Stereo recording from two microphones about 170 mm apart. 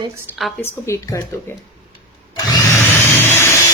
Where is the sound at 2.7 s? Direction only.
15° left (ahead or behind).